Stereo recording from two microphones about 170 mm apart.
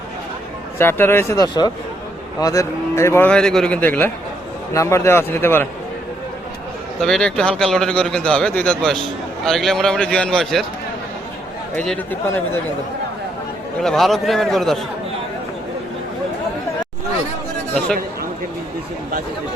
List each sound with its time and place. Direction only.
0.8 s a man's voice: 15° left (ahead or behind)
7.0 s a man's voice: 5° left (ahead or behind)
11.7 s a man's voice: 10° left (ahead or behind)
13.8 s a man's voice: centre (ahead or behind)